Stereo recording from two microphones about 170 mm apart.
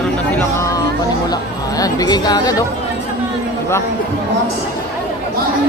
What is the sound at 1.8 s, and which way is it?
Speech, 20° left (ahead or behind).